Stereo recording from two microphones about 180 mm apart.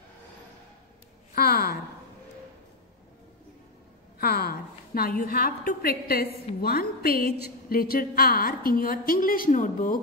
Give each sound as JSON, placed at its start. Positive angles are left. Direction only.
{"t": 1.3, "sound": "a woman's voice", "side_deg": 55}
{"t": 4.2, "sound": "a woman's voice", "side_deg": 60}